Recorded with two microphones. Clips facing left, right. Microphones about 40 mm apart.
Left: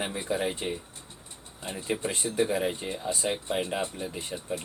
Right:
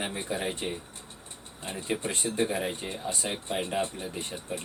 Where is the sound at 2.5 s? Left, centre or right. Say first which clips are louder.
Left 3 dB; centre.